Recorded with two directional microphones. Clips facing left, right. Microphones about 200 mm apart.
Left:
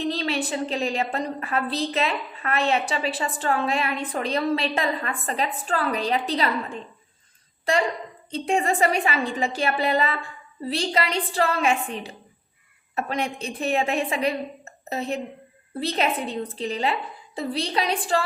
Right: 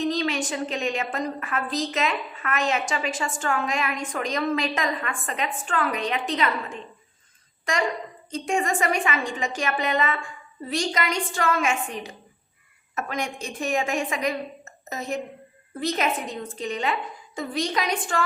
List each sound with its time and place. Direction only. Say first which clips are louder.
0.0 s a woman's voice: right 1 dB; 35° left (ahead or behind)